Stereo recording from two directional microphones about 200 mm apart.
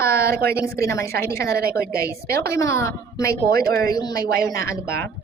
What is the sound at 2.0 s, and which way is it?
A woman's voice, 15° left (ahead or behind).